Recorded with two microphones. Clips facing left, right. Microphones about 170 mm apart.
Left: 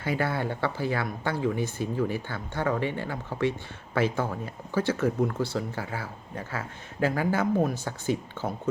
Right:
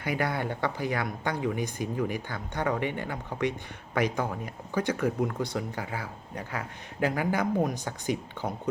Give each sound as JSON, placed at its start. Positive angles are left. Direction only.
{"t": 0.0, "sound": "speech", "side_deg": -15}